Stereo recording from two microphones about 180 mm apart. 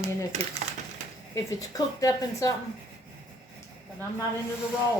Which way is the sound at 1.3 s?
20° left (ahead or behind).